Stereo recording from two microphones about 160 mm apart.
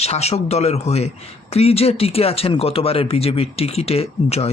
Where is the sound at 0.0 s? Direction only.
40° left (ahead or behind).